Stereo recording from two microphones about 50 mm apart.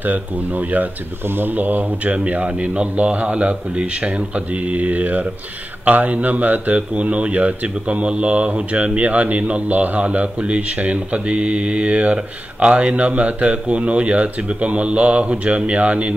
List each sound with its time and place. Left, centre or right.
0.0 s speech: right